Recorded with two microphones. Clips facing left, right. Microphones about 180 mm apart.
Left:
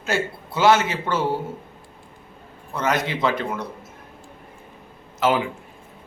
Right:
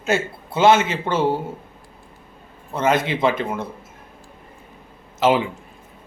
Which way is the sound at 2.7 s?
25° right (ahead or behind).